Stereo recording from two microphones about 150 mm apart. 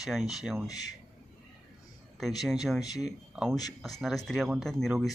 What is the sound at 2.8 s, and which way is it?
Speech, 25° left (ahead or behind).